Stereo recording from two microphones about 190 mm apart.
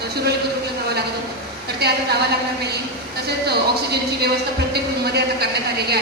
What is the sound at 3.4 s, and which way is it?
Speech, 60° right (ahead or behind).